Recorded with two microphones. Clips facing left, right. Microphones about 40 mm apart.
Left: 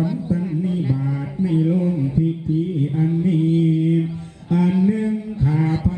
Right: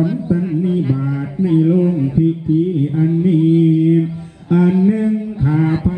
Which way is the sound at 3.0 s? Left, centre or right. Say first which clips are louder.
Right 5 dB; centre.